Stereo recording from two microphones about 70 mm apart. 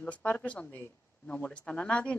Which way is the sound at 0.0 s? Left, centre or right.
Left.